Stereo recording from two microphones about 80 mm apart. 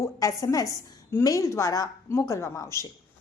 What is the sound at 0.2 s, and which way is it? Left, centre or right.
A woman's voice, left.